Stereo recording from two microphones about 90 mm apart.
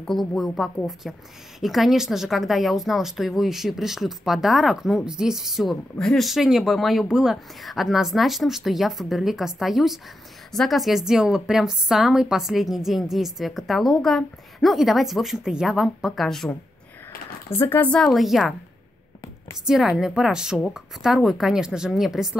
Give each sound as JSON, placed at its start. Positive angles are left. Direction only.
{"t": 0.0, "sound": "a woman's voice", "side_deg": 5}
{"t": 17.5, "sound": "speech", "side_deg": 25}
{"t": 17.9, "sound": "a woman's voice", "side_deg": 0}
{"t": 19.6, "sound": "a woman's voice", "side_deg": -5}